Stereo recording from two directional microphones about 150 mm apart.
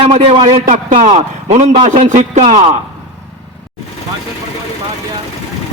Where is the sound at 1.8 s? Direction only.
55° right (ahead or behind).